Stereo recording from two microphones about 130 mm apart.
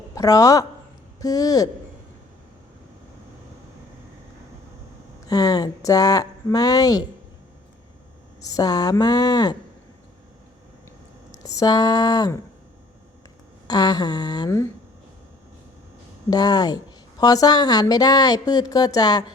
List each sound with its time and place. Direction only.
0.1 s speech: 25° left (ahead or behind)
5.3 s speech: 30° left (ahead or behind)
8.4 s speech: 25° left (ahead or behind)
11.3 s speech: 25° left (ahead or behind)
13.7 s speech: 30° left (ahead or behind)
16.3 s speech: 30° left (ahead or behind)